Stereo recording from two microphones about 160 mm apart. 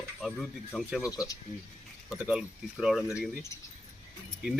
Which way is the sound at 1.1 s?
20° left (ahead or behind).